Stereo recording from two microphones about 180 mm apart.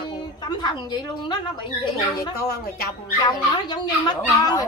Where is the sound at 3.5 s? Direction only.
25° left (ahead or behind).